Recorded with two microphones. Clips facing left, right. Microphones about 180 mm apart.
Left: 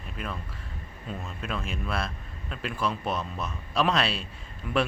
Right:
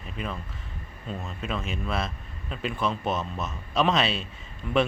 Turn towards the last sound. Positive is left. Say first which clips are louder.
# right 3 dB
turn(degrees=0)  # may be behind; listen again after turning